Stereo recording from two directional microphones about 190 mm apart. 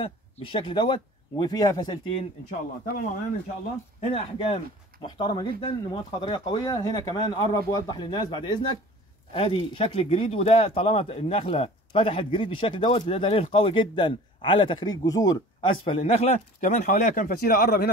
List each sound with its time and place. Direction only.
0.0 s speech: 25° left (ahead or behind)
4.0 s speech: 30° left (ahead or behind); by 17.8 s 50° left (ahead or behind)